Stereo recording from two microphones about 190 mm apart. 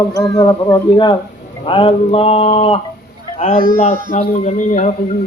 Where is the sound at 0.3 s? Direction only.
25° left (ahead or behind).